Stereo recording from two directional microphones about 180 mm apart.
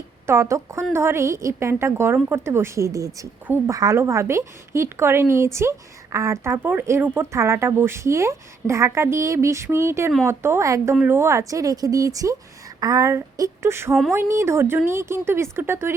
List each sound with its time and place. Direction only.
0.3 s a woman's voice: 15° right (ahead or behind)